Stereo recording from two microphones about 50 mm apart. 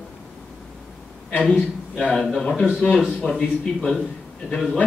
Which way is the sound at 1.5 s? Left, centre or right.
Centre.